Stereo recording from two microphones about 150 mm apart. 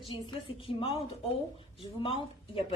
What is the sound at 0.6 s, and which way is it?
A woman's voice, 35° left (ahead or behind).